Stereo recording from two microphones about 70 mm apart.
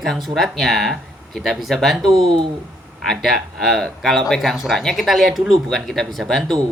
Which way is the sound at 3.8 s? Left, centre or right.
Centre.